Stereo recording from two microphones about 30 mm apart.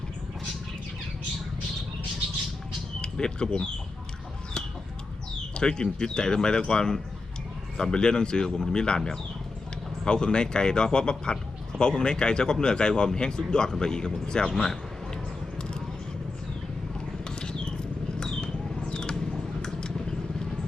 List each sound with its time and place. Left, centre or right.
3.0 s speech: left
5.5 s speech: left
10.1 s speech: left
14.5 s speech: centre
17.2 s rodents: left
18.3 s a sound: centre
18.8 s a sound: left